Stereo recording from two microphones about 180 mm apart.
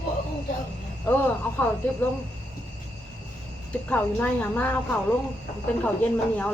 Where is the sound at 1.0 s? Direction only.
10° left (ahead or behind).